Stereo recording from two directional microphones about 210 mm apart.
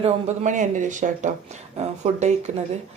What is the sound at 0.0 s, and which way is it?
Speech, 35° right (ahead or behind).